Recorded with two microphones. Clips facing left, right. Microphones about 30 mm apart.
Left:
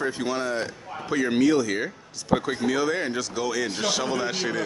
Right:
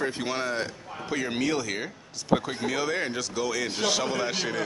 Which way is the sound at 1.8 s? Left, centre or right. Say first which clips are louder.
Left 1 dB; centre.